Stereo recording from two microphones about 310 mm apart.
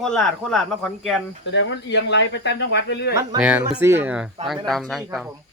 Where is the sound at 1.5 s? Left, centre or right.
Left.